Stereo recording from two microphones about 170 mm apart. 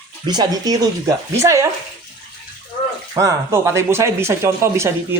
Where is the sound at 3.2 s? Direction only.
15° right (ahead or behind).